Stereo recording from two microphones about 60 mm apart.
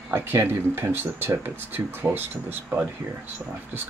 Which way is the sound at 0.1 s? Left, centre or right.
Right.